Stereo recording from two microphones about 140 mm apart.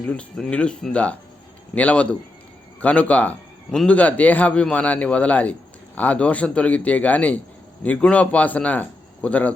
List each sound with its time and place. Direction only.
0.0 s a man's voice: 10° left (ahead or behind)